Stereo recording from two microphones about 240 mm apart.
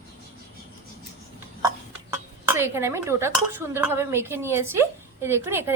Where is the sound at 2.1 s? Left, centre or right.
Centre.